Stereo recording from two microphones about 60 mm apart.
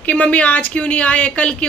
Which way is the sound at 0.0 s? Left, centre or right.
Left.